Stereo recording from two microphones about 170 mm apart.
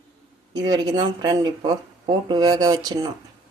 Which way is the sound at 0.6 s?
25° right (ahead or behind).